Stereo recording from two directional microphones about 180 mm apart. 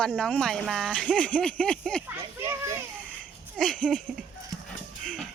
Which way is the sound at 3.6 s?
5° left (ahead or behind).